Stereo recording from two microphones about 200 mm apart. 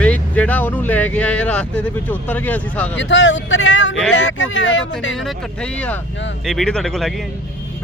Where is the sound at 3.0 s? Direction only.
65° left (ahead or behind).